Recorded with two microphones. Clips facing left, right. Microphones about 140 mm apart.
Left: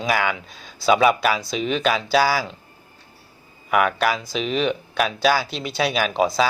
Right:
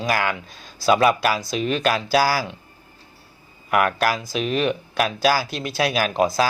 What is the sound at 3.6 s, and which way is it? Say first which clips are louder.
Speech: even; centre (ahead or behind).